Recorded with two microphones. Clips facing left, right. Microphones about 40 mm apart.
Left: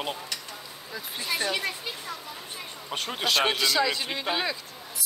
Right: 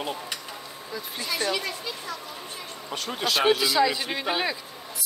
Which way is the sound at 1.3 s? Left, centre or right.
Left.